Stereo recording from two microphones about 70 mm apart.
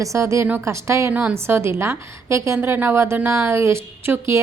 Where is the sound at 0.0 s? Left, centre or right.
Right.